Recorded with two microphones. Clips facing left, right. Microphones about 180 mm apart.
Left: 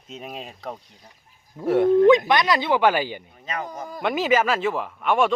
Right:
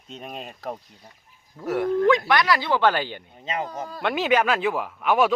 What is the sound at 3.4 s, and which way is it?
Speech, 25° right (ahead or behind).